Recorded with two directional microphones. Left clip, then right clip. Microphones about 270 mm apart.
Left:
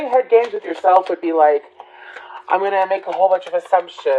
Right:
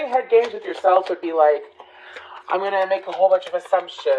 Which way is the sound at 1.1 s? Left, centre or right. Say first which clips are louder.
Left 3 dB; left.